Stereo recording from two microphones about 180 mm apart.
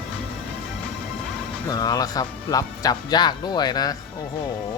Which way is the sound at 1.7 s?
20° left (ahead or behind).